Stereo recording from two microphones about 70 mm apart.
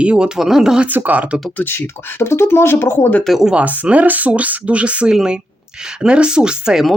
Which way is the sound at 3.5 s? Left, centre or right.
Centre.